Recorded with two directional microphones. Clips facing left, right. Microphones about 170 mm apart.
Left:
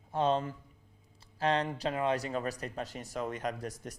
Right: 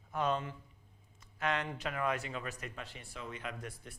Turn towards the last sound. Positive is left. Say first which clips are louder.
# left 7 dB
turn(degrees=40)  # may be behind; listen again after turning